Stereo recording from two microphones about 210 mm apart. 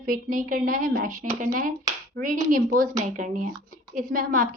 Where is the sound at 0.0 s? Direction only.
40° right (ahead or behind).